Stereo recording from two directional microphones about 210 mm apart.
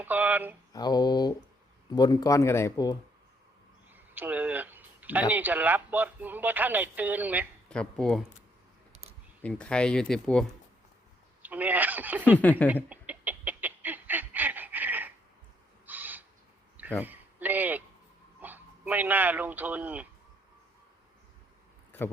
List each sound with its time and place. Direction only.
0.0 s a sound: 10° right (ahead or behind)
0.7 s mantra: 20° left (ahead or behind)
1.9 s speech: 20° left (ahead or behind)
3.9 s a sound: 10° right (ahead or behind)
5.3 s speech: 10° right (ahead or behind)
7.7 s speech: 5° left (ahead or behind)
8.9 s camera: 30° right (ahead or behind)
9.4 s speech: 5° left (ahead or behind)
11.4 s speech: 10° right (ahead or behind)
12.4 s speech: 5° left (ahead or behind)
12.6 s a sound: 5° right (ahead or behind)
15.9 s owl: 10° right (ahead or behind)
17.0 s a sound: 10° right (ahead or behind)
18.3 s speech: 10° right (ahead or behind)